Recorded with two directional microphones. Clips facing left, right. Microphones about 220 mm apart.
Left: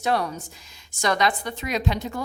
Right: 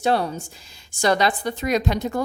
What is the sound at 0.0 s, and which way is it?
A woman's voice, 30° right (ahead or behind).